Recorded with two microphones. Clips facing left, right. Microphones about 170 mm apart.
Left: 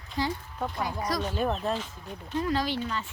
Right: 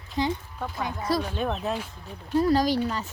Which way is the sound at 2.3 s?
40° right (ahead or behind).